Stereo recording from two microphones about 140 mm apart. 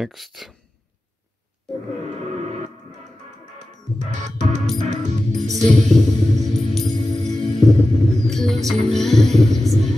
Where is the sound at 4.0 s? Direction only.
60° right (ahead or behind).